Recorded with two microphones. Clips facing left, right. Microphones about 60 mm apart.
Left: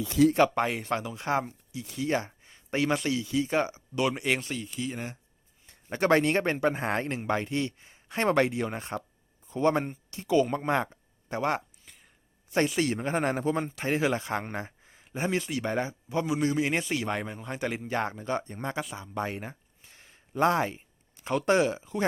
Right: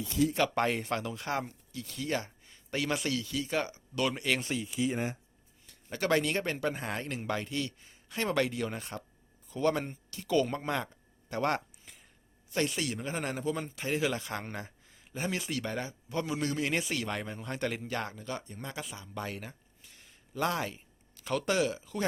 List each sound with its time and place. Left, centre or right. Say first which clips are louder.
0.1 s speech: left 7 dB; left
0.5 s speech: left 2 dB; centre
1.1 s speech: left 5 dB; left
4.4 s speech: right 2 dB; centre
5.6 s speech: left 6 dB; left; by 11.6 s centre
11.9 s a sound: even; centre
12.7 s speech: left 7 dB; left